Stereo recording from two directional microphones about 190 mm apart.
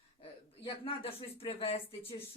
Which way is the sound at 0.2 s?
30° left (ahead or behind).